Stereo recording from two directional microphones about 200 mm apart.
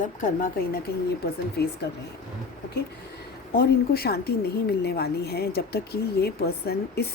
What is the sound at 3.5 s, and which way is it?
A woman's voice, 50° left (ahead or behind).